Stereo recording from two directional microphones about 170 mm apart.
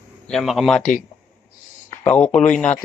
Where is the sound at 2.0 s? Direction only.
5° left (ahead or behind).